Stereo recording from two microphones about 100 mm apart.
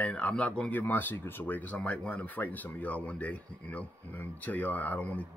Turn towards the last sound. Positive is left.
turn(degrees=15)  # may be behind; listen again after turning